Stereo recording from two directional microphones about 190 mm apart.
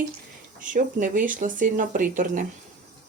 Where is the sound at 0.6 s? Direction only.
45° right (ahead or behind).